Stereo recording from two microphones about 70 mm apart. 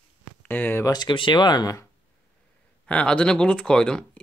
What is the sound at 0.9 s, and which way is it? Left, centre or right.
Speech, left.